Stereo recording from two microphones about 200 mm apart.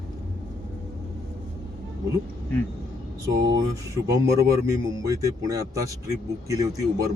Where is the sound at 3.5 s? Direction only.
15° right (ahead or behind).